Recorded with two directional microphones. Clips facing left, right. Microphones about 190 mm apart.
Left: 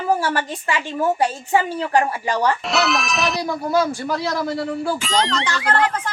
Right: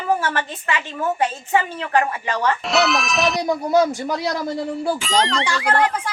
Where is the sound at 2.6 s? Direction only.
Centre (ahead or behind).